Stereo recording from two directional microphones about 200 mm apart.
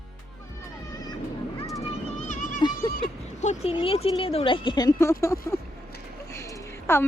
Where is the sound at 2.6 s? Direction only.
20° left (ahead or behind).